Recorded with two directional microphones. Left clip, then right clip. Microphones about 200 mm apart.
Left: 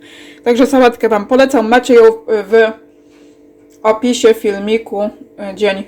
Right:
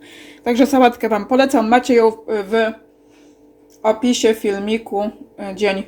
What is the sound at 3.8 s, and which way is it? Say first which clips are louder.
Speech: left 5 dB; centre (ahead or behind).